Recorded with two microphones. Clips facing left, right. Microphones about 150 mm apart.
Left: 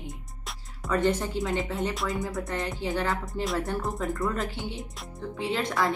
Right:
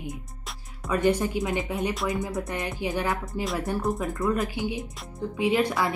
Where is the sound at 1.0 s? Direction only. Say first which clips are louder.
Right 5 dB; 10° right (ahead or behind).